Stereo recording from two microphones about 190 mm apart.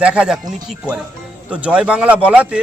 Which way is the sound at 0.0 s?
5° right (ahead or behind).